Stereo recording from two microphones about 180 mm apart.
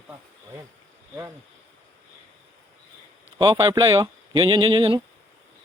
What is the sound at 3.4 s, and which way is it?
Speech, 25° right (ahead or behind).